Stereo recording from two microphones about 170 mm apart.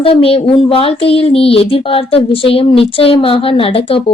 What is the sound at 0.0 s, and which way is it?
Speech, 35° left (ahead or behind).